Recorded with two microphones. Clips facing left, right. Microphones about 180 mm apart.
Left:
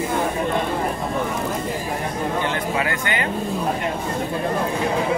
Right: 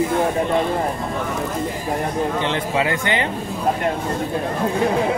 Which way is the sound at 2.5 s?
25° right (ahead or behind).